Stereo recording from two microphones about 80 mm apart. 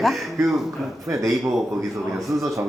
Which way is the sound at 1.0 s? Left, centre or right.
Right.